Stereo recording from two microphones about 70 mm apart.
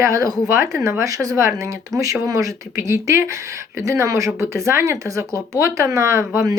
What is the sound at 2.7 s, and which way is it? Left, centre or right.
Speech, right.